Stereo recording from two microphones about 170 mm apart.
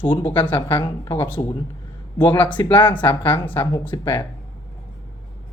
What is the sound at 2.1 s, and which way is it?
Speech, 30° left (ahead or behind).